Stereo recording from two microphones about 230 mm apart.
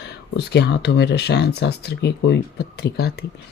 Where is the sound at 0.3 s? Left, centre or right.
Left.